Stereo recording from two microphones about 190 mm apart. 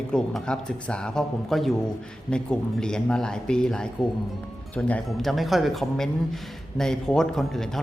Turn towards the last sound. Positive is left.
turn(degrees=0)  # may be behind; listen again after turning